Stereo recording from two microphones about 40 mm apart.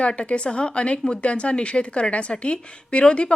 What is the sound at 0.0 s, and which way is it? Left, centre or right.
A woman's voice, left.